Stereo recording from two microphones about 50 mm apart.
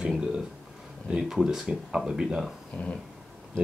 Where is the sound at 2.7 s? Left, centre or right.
Left.